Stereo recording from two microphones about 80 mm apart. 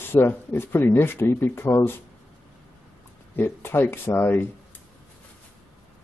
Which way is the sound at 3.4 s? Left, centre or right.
Left.